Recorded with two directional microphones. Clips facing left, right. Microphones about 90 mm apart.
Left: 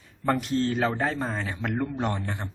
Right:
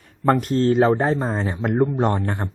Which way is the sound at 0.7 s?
30° right (ahead or behind).